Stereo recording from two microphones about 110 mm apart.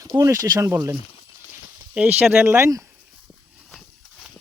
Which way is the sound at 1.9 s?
10° right (ahead or behind).